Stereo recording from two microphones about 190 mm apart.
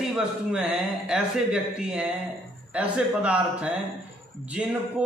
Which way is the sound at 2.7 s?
5° right (ahead or behind).